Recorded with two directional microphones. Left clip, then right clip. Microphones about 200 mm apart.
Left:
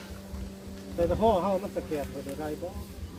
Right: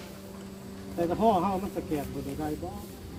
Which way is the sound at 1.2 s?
35° right (ahead or behind).